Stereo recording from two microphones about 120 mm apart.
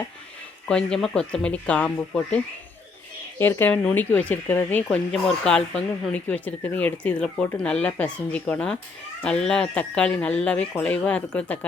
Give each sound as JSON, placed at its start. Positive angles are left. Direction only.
{"t": 0.7, "sound": "speech", "side_deg": 5}